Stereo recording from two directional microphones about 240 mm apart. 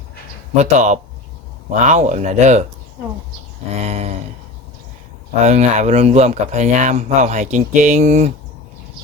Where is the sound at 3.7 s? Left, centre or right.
Right.